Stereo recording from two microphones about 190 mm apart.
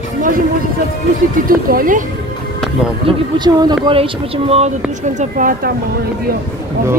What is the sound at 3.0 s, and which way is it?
Speech, 25° right (ahead or behind).